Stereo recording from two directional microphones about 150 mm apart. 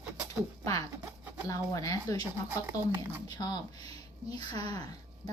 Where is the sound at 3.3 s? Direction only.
25° left (ahead or behind).